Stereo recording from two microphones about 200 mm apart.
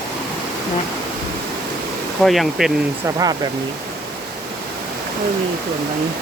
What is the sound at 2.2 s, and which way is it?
Speech, centre (ahead or behind).